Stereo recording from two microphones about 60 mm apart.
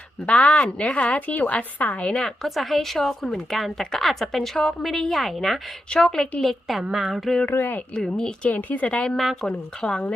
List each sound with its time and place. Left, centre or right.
0.3 s a woman's voice: left
2.1 s speech: centre
7.5 s speech: left
7.9 s a woman's voice: centre
9.1 s speech: centre
9.5 s speech: centre